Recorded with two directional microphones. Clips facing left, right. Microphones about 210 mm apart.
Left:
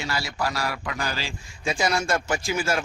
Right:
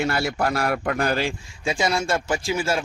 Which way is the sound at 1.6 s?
25° right (ahead or behind).